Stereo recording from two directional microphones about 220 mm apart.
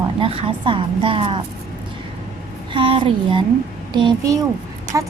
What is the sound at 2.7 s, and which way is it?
A woman's voice, 25° right (ahead or behind).